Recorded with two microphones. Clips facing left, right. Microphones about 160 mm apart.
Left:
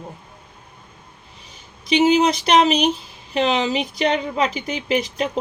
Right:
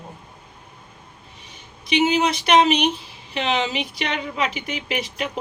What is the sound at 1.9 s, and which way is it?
Speech, 35° left (ahead or behind).